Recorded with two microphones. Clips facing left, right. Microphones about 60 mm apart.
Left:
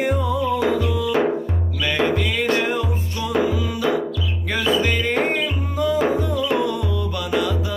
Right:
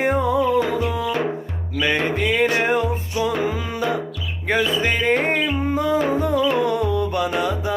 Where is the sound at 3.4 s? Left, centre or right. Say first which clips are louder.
Left 2 dB; right.